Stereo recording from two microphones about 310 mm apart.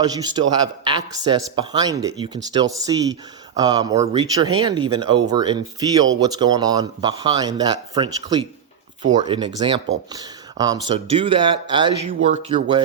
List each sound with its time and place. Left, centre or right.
0.0 s speech: centre